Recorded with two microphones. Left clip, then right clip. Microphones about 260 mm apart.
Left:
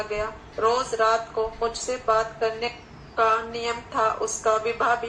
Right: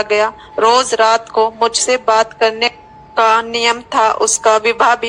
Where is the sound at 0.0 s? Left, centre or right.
Right.